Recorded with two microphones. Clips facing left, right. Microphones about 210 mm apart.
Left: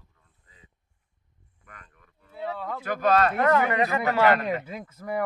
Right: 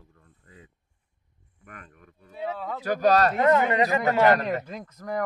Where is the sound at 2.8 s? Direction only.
40° right (ahead or behind).